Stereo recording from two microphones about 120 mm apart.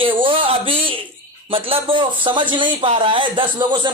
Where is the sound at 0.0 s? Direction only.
50° right (ahead or behind).